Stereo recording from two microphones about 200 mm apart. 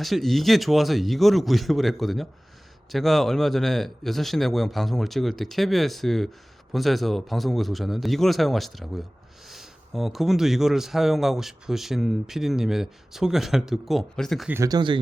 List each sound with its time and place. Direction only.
0.0 s a man's voice: centre (ahead or behind)
14.5 s speech: 20° right (ahead or behind)